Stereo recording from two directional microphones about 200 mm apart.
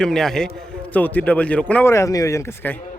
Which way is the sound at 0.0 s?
Centre (ahead or behind).